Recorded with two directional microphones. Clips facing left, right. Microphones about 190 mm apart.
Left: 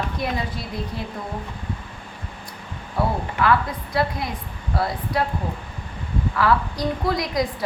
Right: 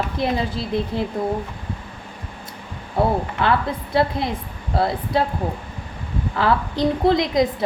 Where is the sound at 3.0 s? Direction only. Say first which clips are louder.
Right 3 dB; 25° right (ahead or behind).